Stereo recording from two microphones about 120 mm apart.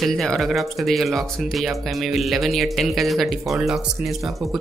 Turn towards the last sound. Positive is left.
turn(degrees=0)  # may be behind; listen again after turning